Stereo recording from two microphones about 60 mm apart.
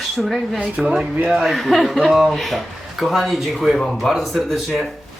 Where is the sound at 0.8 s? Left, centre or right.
Centre.